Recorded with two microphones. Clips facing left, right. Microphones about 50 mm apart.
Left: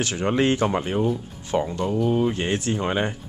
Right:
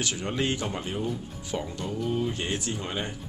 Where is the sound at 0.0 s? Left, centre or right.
Left.